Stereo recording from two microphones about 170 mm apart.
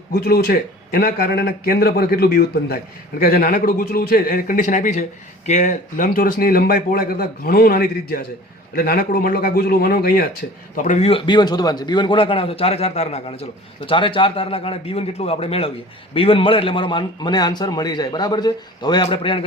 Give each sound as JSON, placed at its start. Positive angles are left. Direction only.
{"t": 0.1, "sound": "a man's voice", "side_deg": 65}
{"t": 10.8, "sound": "a man's voice", "side_deg": 45}